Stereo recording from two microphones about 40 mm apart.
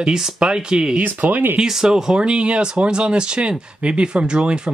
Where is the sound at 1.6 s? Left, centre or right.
Centre.